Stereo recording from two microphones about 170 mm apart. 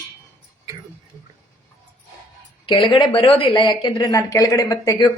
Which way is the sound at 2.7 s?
30° left (ahead or behind).